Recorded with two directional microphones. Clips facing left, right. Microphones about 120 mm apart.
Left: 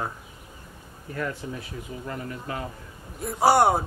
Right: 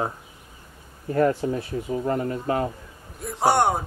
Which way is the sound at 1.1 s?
40° right (ahead or behind).